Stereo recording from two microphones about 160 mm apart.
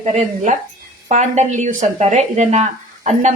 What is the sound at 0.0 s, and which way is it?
A woman's voice, 45° right (ahead or behind).